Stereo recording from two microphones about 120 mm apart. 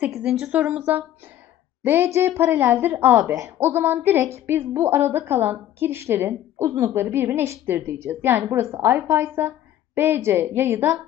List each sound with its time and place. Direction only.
0.0 s a woman's voice: 5° right (ahead or behind)